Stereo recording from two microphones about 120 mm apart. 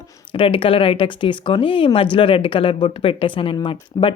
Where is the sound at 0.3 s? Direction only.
50° left (ahead or behind).